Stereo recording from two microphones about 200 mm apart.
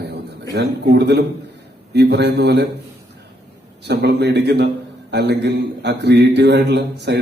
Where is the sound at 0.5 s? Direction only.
55° right (ahead or behind).